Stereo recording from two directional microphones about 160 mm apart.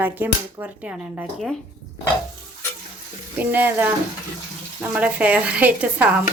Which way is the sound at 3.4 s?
10° right (ahead or behind).